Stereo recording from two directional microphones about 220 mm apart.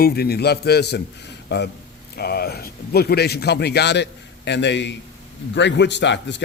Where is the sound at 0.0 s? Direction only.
45° left (ahead or behind).